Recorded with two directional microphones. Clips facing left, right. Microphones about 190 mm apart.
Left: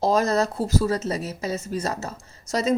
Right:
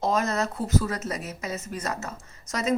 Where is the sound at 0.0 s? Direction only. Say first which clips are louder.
Left 5 dB; 35° left (ahead or behind).